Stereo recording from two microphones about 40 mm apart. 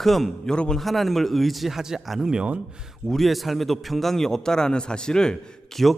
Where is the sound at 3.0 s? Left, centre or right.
Centre.